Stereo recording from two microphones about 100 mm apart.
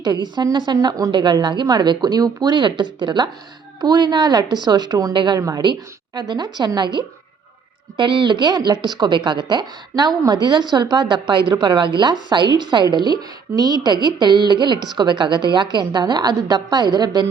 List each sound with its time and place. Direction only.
0.0 s speech: 45° right (ahead or behind)
1.1 s speech: 50° right (ahead or behind)
5.4 s a woman's voice: 35° right (ahead or behind)
6.1 s speech: 45° right (ahead or behind)